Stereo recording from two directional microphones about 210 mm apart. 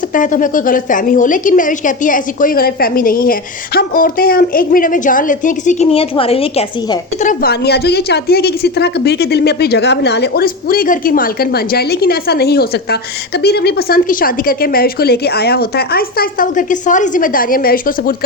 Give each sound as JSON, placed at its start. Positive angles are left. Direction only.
{"t": 0.1, "sound": "a woman's voice", "side_deg": 40}
{"t": 7.2, "sound": "a woman's voice", "side_deg": 40}